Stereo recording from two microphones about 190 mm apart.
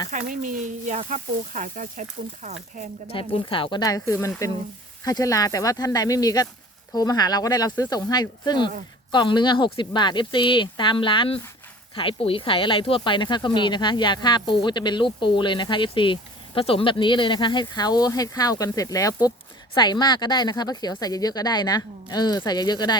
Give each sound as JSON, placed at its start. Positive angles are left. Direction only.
{"t": 0.1, "sound": "speech", "side_deg": -45}
{"t": 3.1, "sound": "speech", "side_deg": 25}